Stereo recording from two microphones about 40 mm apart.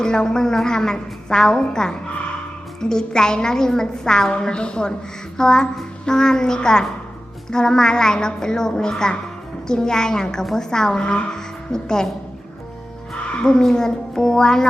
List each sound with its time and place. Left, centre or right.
0.0 s a woman's voice: centre
13.2 s a woman's voice: centre